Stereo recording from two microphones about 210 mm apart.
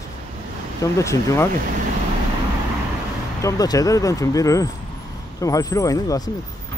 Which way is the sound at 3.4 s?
15° left (ahead or behind).